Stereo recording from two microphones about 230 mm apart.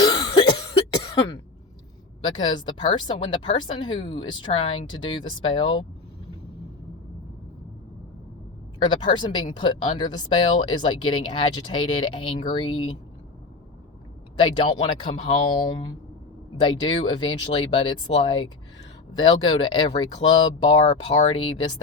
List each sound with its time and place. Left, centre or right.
0.0 s cough: left
2.2 s speech: centre
8.8 s speech: centre
14.3 s speech: centre